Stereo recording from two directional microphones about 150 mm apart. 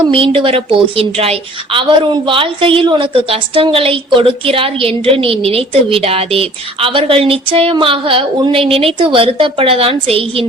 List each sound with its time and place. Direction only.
0.0 s a woman's voice: 40° right (ahead or behind)